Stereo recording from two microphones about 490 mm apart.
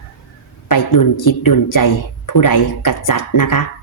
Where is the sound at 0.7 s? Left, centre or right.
Left.